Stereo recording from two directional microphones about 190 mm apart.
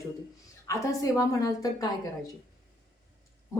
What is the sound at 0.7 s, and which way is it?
A woman's voice, 15° left (ahead or behind).